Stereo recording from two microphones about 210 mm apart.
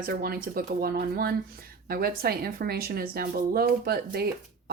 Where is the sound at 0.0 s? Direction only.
45° right (ahead or behind).